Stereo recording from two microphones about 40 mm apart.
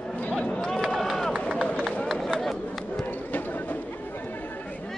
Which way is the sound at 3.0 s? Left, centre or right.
Left.